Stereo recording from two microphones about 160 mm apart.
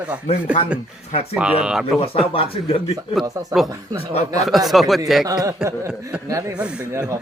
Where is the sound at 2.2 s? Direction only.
35° left (ahead or behind).